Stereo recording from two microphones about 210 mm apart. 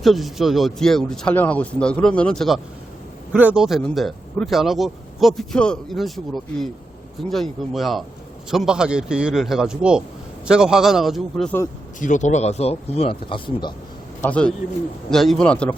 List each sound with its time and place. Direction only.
0.0 s speech: centre (ahead or behind)
11.9 s speech: 35° left (ahead or behind)
14.2 s speech: 5° left (ahead or behind)